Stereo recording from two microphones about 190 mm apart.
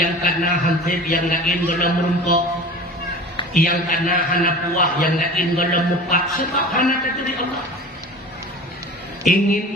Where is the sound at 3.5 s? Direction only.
45° left (ahead or behind).